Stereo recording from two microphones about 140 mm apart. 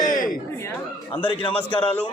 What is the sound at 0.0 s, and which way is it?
Chatter, 70° left (ahead or behind).